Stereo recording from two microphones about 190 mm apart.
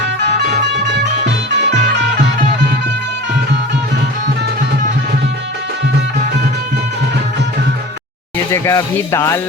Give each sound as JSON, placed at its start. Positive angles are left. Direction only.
{"t": 0.4, "sound": "music", "side_deg": -65}
{"t": 8.5, "sound": "speech", "side_deg": 15}